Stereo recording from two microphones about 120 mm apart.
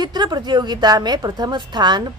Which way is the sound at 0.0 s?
35° right (ahead or behind).